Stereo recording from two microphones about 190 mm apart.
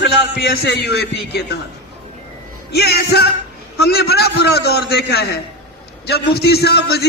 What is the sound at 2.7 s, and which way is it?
A man's voice, 60° left (ahead or behind).